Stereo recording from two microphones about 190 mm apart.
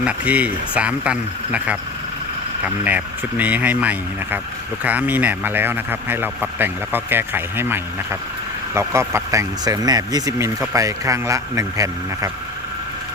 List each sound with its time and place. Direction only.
0.0 s speech: 5° right (ahead or behind)
2.8 s speech: 10° right (ahead or behind)